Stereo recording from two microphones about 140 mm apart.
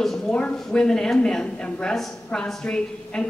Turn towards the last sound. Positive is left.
turn(degrees=5)  # may be behind; listen again after turning